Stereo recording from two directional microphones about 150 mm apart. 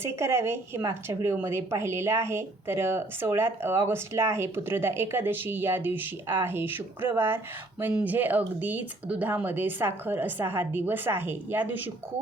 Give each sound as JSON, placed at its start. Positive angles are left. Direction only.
{"t": 0.0, "sound": "speech", "side_deg": -20}